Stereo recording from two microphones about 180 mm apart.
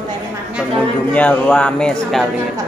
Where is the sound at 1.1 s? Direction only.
10° left (ahead or behind).